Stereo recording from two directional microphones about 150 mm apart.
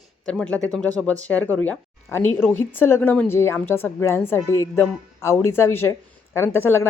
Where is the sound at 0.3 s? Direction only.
5° left (ahead or behind).